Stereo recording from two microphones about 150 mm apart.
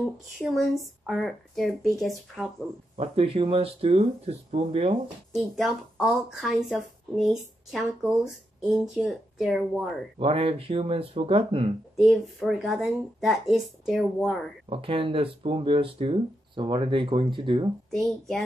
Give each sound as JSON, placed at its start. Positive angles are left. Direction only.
{"t": 0.5, "sound": "speech", "side_deg": 0}
{"t": 3.0, "sound": "speech", "side_deg": -40}
{"t": 5.3, "sound": "speech", "side_deg": 0}
{"t": 10.1, "sound": "speech", "side_deg": -40}
{"t": 12.1, "sound": "speech", "side_deg": 0}
{"t": 14.7, "sound": "speech", "side_deg": -35}
{"t": 17.9, "sound": "speech", "side_deg": 5}